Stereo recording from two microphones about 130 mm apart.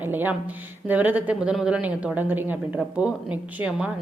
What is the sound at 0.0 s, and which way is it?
Speech, 15° right (ahead or behind).